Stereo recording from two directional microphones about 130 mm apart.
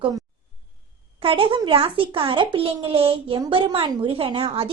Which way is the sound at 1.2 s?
45° right (ahead or behind).